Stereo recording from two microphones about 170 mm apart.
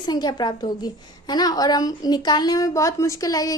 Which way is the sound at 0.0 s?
25° left (ahead or behind).